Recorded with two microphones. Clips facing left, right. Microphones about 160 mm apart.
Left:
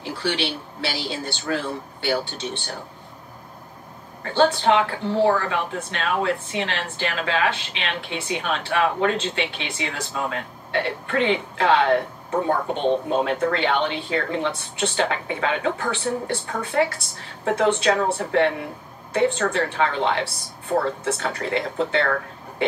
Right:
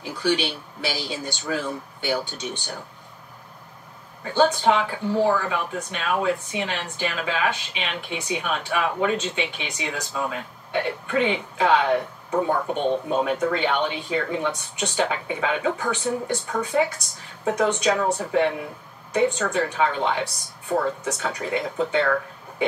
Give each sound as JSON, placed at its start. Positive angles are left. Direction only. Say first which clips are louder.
{"t": 0.0, "sound": "speech", "louder": "right 2 dB", "side_deg": -15}
{"t": 4.2, "sound": "speech", "louder": "left 1 dB", "side_deg": -15}
{"t": 13.2, "sound": "speech", "louder": "left 1 dB", "side_deg": -10}